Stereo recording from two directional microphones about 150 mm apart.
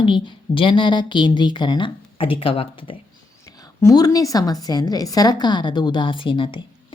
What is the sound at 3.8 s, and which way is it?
A woman's voice, 20° left (ahead or behind).